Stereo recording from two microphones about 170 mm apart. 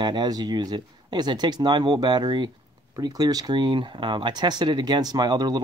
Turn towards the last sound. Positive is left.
turn(degrees=-25)  # may be behind; listen again after turning